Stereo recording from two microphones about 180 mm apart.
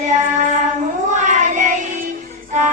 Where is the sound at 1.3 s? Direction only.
45° right (ahead or behind).